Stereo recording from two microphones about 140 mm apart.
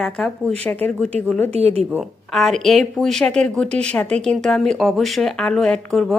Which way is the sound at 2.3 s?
Centre (ahead or behind).